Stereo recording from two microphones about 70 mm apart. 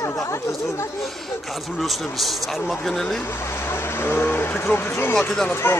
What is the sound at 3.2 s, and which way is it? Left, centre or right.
Speech, left.